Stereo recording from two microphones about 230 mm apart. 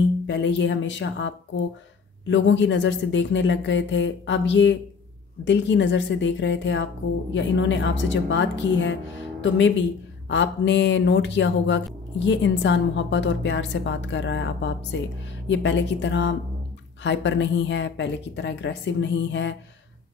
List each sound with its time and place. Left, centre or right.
0.3 s a woman's voice: left